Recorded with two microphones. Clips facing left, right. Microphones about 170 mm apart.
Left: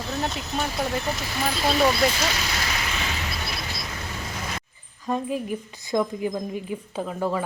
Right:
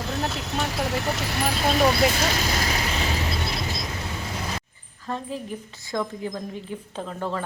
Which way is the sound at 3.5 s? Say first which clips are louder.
Right 4 dB; 20° right (ahead or behind).